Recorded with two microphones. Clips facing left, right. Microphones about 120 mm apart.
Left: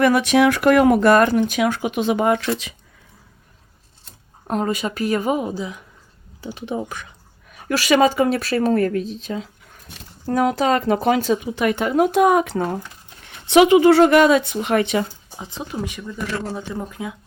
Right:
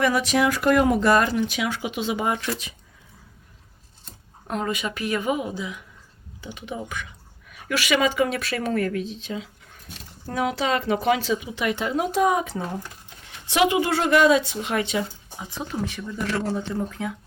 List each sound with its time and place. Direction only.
0.0 s speech: 60° left (ahead or behind); by 2.7 s 90° left
4.4 s speech: 35° left (ahead or behind); by 15.0 s 55° left (ahead or behind)
15.4 s speech: 25° left (ahead or behind)